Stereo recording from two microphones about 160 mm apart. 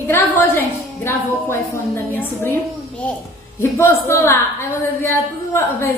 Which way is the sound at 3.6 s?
15° left (ahead or behind).